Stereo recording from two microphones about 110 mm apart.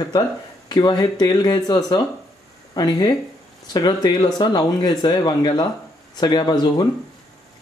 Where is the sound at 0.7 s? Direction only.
40° left (ahead or behind).